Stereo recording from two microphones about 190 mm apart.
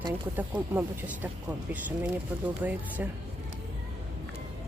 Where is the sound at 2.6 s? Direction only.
10° right (ahead or behind).